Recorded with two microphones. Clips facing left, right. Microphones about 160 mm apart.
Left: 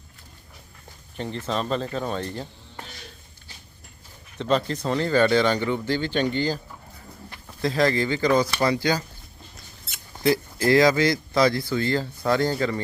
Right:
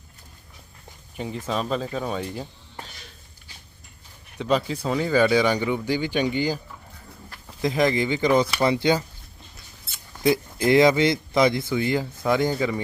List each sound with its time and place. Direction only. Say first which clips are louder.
1.1 s speech: even; 10° right (ahead or behind)
4.4 s speech: even; 10° right (ahead or behind)
7.6 s speech: even; 15° right (ahead or behind)
10.2 s speech: even; 20° right (ahead or behind)